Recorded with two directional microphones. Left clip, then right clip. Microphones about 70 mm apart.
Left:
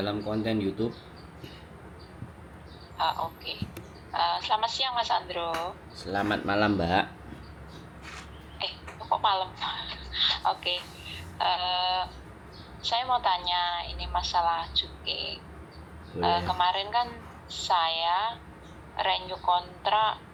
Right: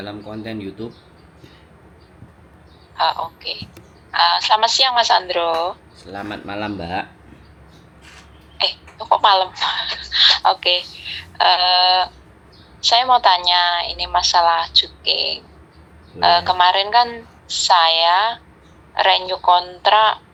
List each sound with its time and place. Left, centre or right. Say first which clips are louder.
0.0 s speech: even; centre
3.0 s a woman's voice: right 9 dB; right
6.0 s speech: left 1 dB; centre
8.5 s a woman's voice: right 14 dB; right